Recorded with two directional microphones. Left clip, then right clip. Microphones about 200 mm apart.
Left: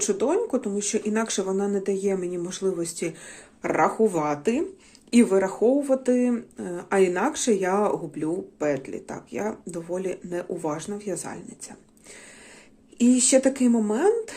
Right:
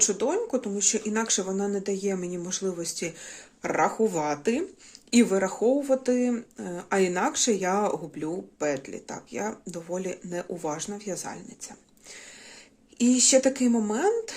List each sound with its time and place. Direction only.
0.0 s speech: centre (ahead or behind)
13.0 s speech: 5° right (ahead or behind)